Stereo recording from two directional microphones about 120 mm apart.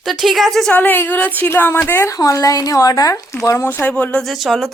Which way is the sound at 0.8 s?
15° left (ahead or behind).